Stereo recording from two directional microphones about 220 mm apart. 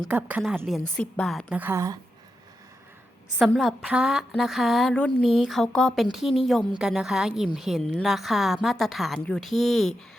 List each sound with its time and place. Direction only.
0.1 s a woman's voice: 5° right (ahead or behind)
3.3 s a woman's voice: centre (ahead or behind)